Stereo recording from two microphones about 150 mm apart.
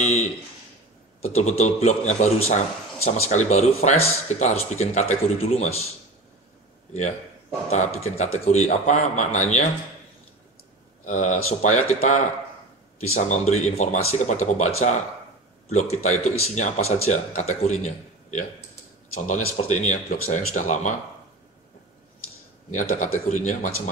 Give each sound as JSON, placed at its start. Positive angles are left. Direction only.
{"t": 0.0, "sound": "speech", "side_deg": 50}
{"t": 7.7, "sound": "speech", "side_deg": 50}
{"t": 11.1, "sound": "speech", "side_deg": 50}
{"t": 13.5, "sound": "speech", "side_deg": 50}
{"t": 22.7, "sound": "speech", "side_deg": 55}